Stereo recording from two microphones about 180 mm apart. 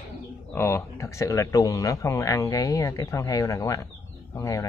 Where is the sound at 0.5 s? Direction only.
15° left (ahead or behind).